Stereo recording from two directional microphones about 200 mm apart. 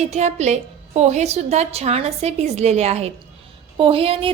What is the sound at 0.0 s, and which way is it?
A woman's voice, 35° right (ahead or behind).